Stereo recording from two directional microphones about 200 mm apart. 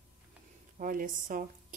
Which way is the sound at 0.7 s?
40° right (ahead or behind).